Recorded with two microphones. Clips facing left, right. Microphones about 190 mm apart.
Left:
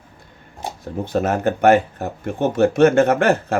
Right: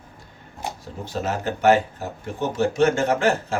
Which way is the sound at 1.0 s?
55° left (ahead or behind).